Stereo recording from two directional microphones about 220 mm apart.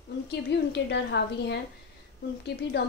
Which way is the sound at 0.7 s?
50° left (ahead or behind).